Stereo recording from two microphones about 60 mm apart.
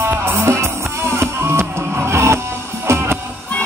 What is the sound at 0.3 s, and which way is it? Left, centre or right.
Music, right.